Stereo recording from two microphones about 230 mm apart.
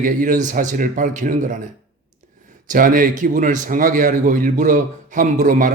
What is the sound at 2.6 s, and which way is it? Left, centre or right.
Speech, right.